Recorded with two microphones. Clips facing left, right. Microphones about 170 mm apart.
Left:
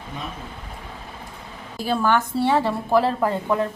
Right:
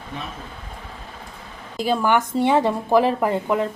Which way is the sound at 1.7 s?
15° right (ahead or behind).